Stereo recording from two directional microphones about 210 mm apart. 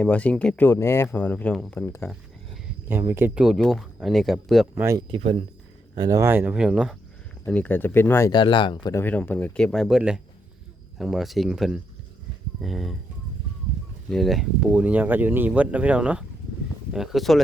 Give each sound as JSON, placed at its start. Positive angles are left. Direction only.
{"t": 0.0, "sound": "speech", "side_deg": 5}
{"t": 3.1, "sound": "speech", "side_deg": -10}
{"t": 4.7, "sound": "speech", "side_deg": -15}
{"t": 5.0, "sound": "speech", "side_deg": -25}
{"t": 6.0, "sound": "speech", "side_deg": -15}
{"t": 7.4, "sound": "speech", "side_deg": 5}
{"t": 14.1, "sound": "speech", "side_deg": 0}